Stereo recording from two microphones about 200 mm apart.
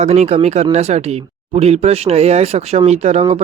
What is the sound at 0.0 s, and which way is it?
Speech, 35° right (ahead or behind).